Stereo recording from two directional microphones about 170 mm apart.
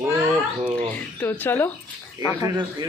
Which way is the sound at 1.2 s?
10° left (ahead or behind).